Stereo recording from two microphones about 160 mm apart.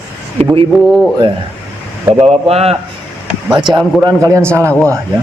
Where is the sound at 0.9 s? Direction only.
Centre (ahead or behind).